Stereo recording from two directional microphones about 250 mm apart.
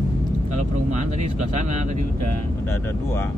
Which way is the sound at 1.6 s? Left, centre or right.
Right.